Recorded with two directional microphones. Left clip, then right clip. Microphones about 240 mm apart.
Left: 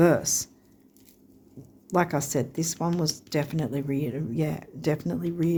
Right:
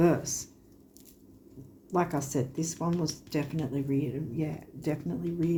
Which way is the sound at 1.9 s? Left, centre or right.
Left.